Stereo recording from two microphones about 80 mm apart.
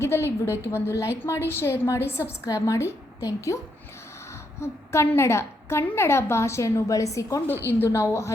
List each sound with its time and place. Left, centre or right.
0.0 s a woman's voice: left
0.5 s a woman's voice: right
0.9 s a woman's voice: left
4.6 s a woman's voice: left